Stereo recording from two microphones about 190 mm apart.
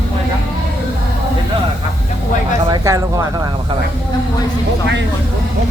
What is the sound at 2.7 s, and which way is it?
Speech, 20° right (ahead or behind).